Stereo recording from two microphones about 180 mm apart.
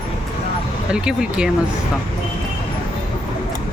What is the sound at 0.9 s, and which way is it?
Speech, 5° right (ahead or behind).